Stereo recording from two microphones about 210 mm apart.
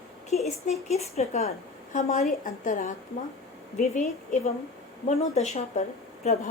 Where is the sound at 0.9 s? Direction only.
30° left (ahead or behind).